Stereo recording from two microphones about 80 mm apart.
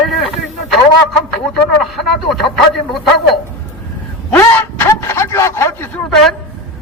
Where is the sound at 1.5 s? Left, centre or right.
Centre.